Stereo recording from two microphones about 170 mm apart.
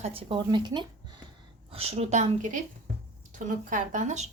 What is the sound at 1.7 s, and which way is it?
A woman's voice, 35° right (ahead or behind).